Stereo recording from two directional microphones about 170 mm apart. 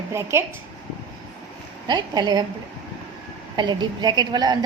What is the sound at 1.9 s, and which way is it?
Speech, 25° right (ahead or behind).